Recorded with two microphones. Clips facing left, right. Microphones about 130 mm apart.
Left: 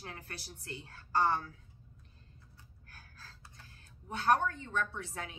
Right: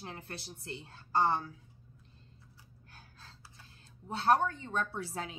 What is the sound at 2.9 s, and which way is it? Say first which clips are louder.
Gasp: even; 25° right (ahead or behind).